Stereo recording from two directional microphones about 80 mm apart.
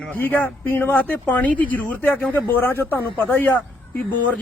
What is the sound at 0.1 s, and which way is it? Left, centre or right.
Speech, left.